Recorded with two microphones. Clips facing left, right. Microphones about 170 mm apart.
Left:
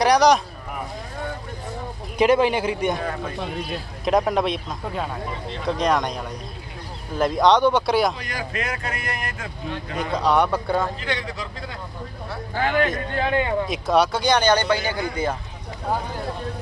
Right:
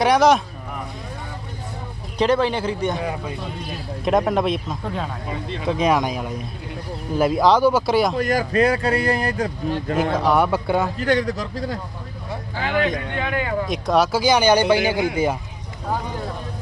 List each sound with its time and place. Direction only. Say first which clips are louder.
0.0 s speech: right 1 dB; centre (ahead or behind)
2.1 s a man's voice: left 1 dB; 10° left (ahead or behind)
3.0 s speech: right 1 dB; 10° right (ahead or behind)
4.0 s speech: right 1 dB; centre (ahead or behind)
8.1 s a man's voice: right 11 dB; 45° right (ahead or behind)
10.0 s speech: right 1 dB; 5° right (ahead or behind)
11.0 s a man's voice: right 8 dB; 45° right (ahead or behind)
12.5 s a man's voice: left 1 dB; 50° left (ahead or behind)
13.1 s a man's voice: left 2 dB; 30° left (ahead or behind)
13.7 s speech: right 1 dB; centre (ahead or behind)